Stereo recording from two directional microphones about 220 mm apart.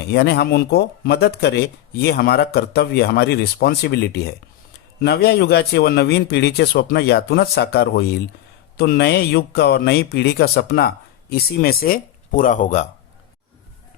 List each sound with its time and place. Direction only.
0.1 s a man's voice: 50° left (ahead or behind); by 12.9 s 35° left (ahead or behind)